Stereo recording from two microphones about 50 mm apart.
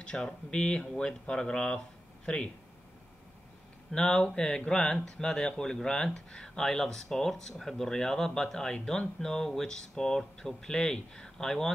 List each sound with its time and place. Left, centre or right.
0.0 s speech: centre
3.9 s speech: centre